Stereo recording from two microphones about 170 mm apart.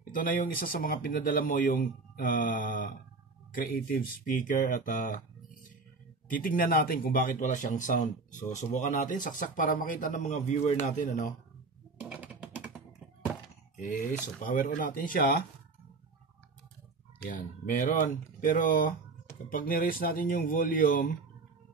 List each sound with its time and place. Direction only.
0.1 s speech: 50° left (ahead or behind)
12.0 s computer keyboard: 10° right (ahead or behind)
14.4 s speech: 55° left (ahead or behind)
17.2 s speech: 50° left (ahead or behind)